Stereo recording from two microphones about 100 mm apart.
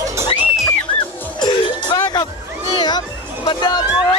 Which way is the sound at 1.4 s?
55° left (ahead or behind).